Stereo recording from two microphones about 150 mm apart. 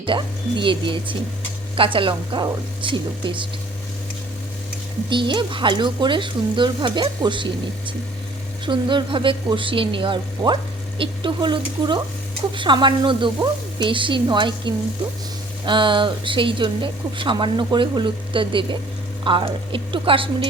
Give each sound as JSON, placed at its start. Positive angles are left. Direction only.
{"t": 0.0, "sound": "speech", "side_deg": -35}
{"t": 5.0, "sound": "speech", "side_deg": -30}
{"t": 8.6, "sound": "speech", "side_deg": -30}